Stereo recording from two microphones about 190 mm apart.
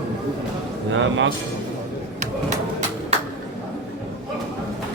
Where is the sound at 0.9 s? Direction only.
75° right (ahead or behind).